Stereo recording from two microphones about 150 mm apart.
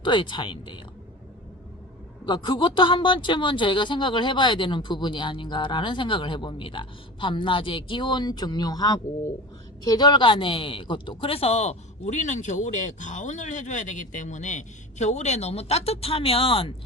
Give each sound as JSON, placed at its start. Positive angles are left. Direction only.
{"t": 0.0, "sound": "a woman's voice", "side_deg": 30}
{"t": 2.2, "sound": "a woman's voice", "side_deg": 30}